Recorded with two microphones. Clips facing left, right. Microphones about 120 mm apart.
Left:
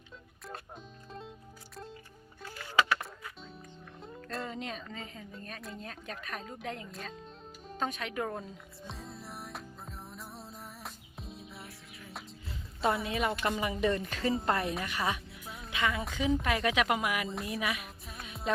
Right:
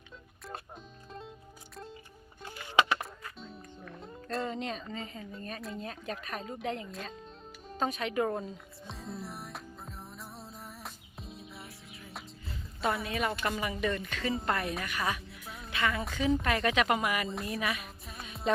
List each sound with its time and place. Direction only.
1.7 s music: centre (ahead or behind)
2.6 s a sound: 20° right (ahead or behind)
3.0 s music: centre (ahead or behind)
5.3 s speech: centre (ahead or behind)
7.7 s music: centre (ahead or behind)
12.8 s a woman's voice: 25° left (ahead or behind)
13.8 s music: 30° left (ahead or behind)
14.4 s a woman's voice: 25° left (ahead or behind)
14.8 s music: 25° left (ahead or behind)
15.9 s a woman's voice: centre (ahead or behind)